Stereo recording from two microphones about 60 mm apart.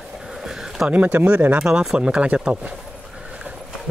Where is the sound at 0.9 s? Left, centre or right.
Right.